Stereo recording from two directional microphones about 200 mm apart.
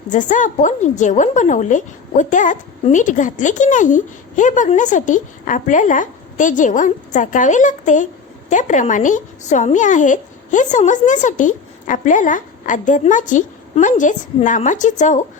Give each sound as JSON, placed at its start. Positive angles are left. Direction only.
{"t": 0.1, "sound": "a woman's voice", "side_deg": 40}